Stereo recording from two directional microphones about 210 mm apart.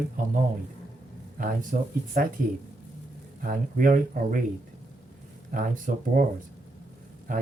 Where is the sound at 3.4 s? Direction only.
40° right (ahead or behind).